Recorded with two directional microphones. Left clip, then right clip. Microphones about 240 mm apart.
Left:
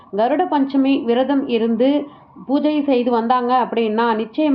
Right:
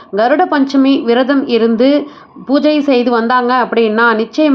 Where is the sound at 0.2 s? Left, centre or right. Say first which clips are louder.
Right 6 dB; right.